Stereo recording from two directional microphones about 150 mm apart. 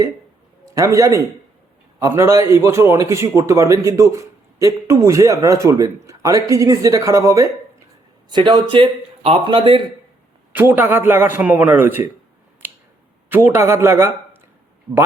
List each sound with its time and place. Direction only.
0.6 s a man's voice: 20° right (ahead or behind)
10.5 s a man's voice: 10° right (ahead or behind)
13.3 s a man's voice: 15° right (ahead or behind)